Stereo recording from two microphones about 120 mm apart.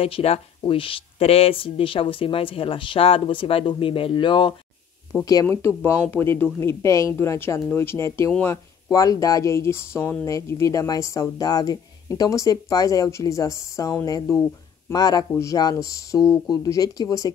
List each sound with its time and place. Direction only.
0.0 s speech: 55° left (ahead or behind)
5.2 s speech: 30° left (ahead or behind)